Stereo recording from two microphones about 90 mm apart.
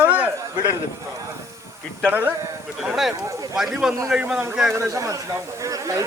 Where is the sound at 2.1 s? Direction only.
20° right (ahead or behind).